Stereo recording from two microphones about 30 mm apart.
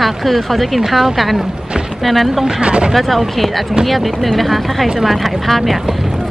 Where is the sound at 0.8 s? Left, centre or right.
Centre.